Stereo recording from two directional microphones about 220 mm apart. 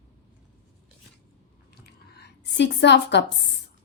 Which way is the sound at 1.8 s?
50° left (ahead or behind).